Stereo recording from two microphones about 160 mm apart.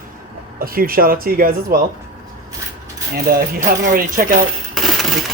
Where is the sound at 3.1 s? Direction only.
70° right (ahead or behind).